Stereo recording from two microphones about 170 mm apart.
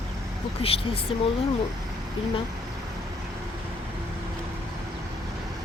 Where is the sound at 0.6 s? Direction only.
35° left (ahead or behind).